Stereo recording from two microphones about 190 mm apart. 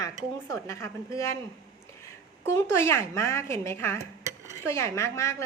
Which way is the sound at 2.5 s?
15° left (ahead or behind).